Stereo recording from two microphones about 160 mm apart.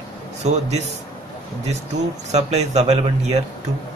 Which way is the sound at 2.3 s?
45° right (ahead or behind).